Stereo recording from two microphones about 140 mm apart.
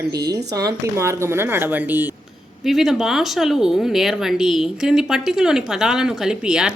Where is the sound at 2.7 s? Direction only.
Centre (ahead or behind).